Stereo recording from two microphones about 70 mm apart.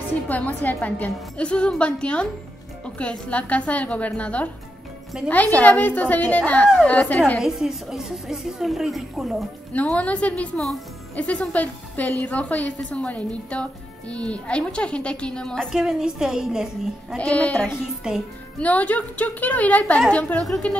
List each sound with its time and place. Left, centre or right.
0.3 s a woman's voice: left
7.3 s a woman's voice: centre
9.9 s a woman's voice: centre
15.7 s a woman's voice: centre
17.2 s a woman's voice: centre